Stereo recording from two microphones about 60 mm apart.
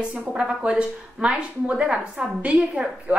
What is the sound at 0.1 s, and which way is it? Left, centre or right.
A woman's voice, centre.